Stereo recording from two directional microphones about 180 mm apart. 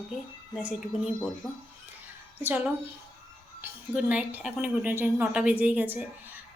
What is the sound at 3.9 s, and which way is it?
A woman's voice, 5° right (ahead or behind).